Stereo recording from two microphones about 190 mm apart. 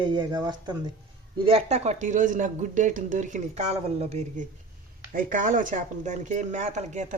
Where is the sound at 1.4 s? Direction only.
35° right (ahead or behind).